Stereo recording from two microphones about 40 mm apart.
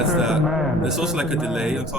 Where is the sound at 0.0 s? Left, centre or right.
Centre.